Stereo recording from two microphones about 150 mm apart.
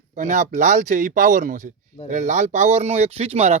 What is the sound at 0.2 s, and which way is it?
Speech, 55° right (ahead or behind).